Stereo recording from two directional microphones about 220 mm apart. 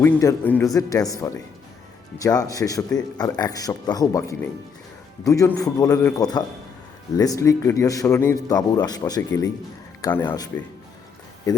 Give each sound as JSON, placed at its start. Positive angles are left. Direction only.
{"t": 0.0, "sound": "speech", "side_deg": 15}